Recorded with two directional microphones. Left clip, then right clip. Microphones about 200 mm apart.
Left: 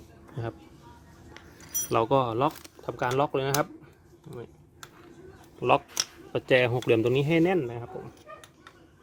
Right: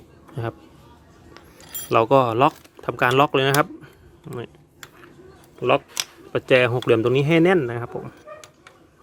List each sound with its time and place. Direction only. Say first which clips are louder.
1.9 s speech: right 8 dB; 15° right (ahead or behind)
5.5 s speech: right 4 dB; 10° right (ahead or behind)